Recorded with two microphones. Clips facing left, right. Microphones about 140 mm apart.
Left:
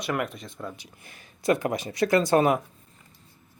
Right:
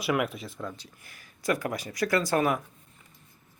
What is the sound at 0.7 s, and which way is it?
Speech, 15° left (ahead or behind).